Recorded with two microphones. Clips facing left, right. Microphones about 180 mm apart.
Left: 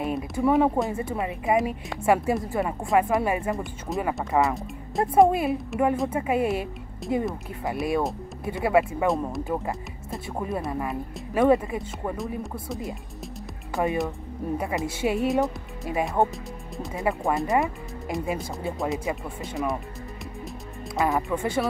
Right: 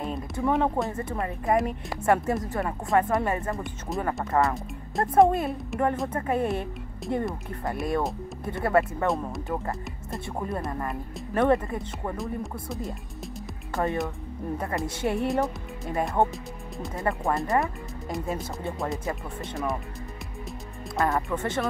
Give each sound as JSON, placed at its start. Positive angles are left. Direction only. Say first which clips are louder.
{"t": 0.3, "sound": "speech", "louder": "left 4 dB", "side_deg": 5}
{"t": 18.8, "sound": "speech", "louder": "left 3 dB", "side_deg": 0}
{"t": 20.9, "sound": "speech", "louder": "left 1 dB", "side_deg": 0}